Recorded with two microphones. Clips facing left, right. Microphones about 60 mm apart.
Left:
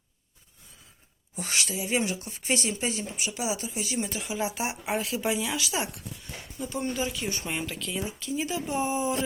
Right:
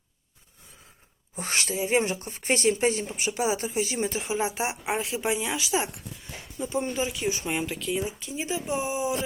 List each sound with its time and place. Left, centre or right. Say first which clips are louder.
1.4 s speech: right 3 dB; right; by 7.9 s centre
7.9 s speech: right 1 dB; right